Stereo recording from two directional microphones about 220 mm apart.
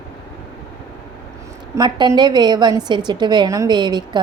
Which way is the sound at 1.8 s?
20° right (ahead or behind).